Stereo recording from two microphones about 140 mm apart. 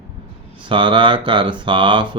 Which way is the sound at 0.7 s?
35° right (ahead or behind).